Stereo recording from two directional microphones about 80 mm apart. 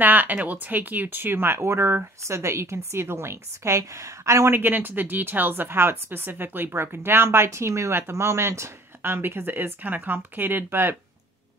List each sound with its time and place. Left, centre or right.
0.0 s speech: right